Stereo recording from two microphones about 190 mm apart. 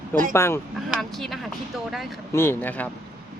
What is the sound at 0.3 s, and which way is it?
Speech, 15° left (ahead or behind).